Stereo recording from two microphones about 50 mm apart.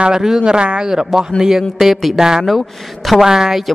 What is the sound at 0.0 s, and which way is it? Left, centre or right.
A man's voice, centre.